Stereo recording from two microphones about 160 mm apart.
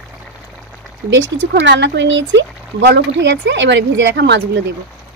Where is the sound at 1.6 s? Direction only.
90° right.